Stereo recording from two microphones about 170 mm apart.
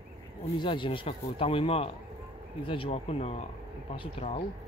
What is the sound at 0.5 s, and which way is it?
Speech, 30° left (ahead or behind).